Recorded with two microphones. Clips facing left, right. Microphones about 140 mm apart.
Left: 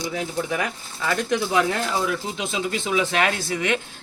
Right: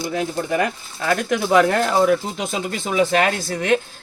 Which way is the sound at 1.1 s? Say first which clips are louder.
Right 5 dB; 55° right (ahead or behind).